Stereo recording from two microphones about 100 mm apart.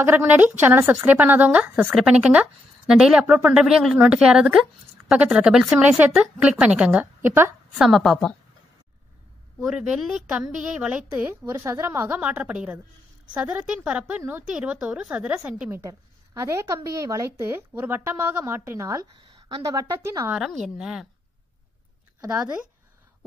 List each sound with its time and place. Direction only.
0.0 s a woman's voice: 15° right (ahead or behind)
7.7 s a woman's voice: centre (ahead or behind)
9.6 s a woman's voice: 5° right (ahead or behind)
11.6 s a woman's voice: 30° right (ahead or behind)
12.2 s a woman's voice: 10° right (ahead or behind)
15.8 s a woman's voice: 30° right (ahead or behind)
20.3 s a woman's voice: 5° right (ahead or behind)